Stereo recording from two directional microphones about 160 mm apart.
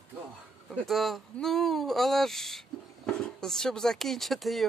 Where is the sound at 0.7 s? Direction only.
Centre (ahead or behind).